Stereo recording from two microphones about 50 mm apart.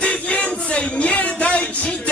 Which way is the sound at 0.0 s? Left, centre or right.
Left.